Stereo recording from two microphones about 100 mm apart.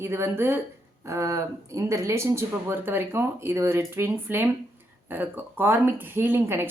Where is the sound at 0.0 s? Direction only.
25° right (ahead or behind).